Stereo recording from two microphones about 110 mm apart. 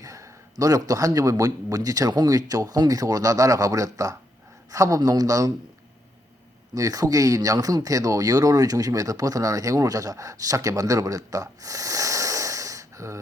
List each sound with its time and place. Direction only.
0.0 s speech: 30° right (ahead or behind)
6.7 s speech: 30° right (ahead or behind)